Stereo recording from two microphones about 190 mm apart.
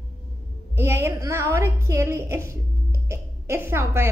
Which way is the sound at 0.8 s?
15° right (ahead or behind).